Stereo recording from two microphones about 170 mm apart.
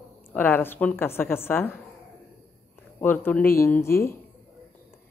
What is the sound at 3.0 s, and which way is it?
Speech, 10° left (ahead or behind).